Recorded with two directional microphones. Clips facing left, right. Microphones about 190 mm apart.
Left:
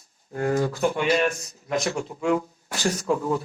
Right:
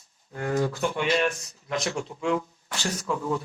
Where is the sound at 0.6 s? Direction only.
40° left (ahead or behind).